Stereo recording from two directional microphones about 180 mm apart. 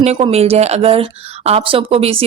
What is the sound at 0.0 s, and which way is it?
Speech, 35° right (ahead or behind).